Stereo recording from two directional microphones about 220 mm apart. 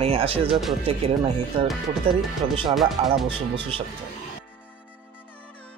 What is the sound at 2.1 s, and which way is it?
Speech, 25° right (ahead or behind).